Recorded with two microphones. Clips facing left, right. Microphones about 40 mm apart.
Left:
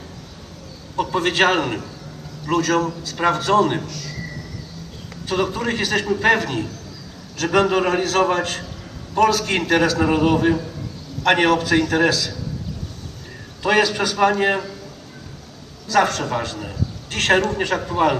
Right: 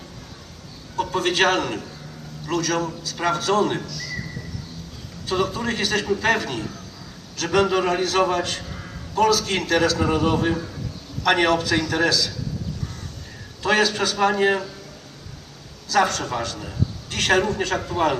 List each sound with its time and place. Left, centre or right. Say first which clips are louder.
0.9 s a man's voice: left 2 dB; centre
3.8 s speech: left 1 dB; left
5.3 s a man's voice: left 2 dB; left
5.7 s a man's voice: left 2 dB; centre
7.3 s a man's voice: left 2 dB; centre
9.2 s a man's voice: left 2 dB; left
9.5 s a man's voice: left 2 dB; left
11.7 s a man's voice: left 3 dB; left
13.6 s a man's voice: left 2 dB; centre
16.0 s a woman's voice: left 2 dB; left